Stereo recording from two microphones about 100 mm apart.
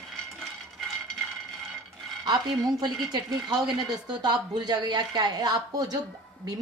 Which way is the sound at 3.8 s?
45° right (ahead or behind).